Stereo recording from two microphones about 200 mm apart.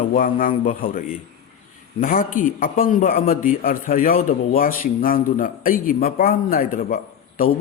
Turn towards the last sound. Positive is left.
turn(degrees=45)  # may be behind; listen again after turning